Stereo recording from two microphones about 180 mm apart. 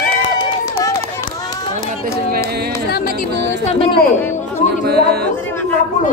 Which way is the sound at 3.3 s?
65° right (ahead or behind).